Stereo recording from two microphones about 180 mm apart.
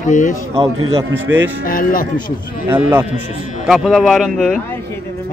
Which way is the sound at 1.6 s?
50° left (ahead or behind).